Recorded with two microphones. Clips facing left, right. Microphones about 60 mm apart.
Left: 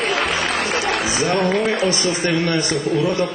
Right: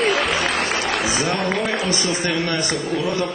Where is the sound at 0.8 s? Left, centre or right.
Centre.